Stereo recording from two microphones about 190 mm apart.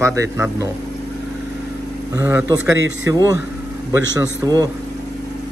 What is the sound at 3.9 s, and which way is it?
Speech, 20° right (ahead or behind).